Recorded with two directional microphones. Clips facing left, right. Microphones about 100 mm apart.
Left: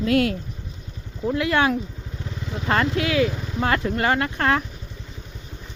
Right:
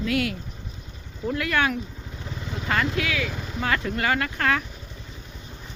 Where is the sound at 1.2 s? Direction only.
25° left (ahead or behind).